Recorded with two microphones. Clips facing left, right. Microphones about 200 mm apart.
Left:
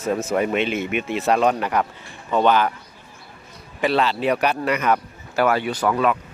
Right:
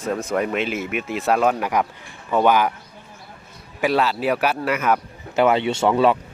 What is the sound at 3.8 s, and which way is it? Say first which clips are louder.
Speech: even; 10° right (ahead or behind).